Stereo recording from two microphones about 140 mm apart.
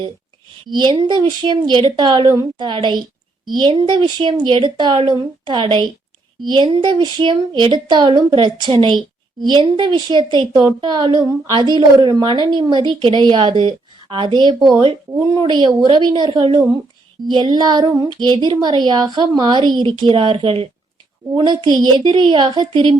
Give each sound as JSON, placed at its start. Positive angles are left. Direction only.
{"t": 0.7, "sound": "a woman's voice", "side_deg": -35}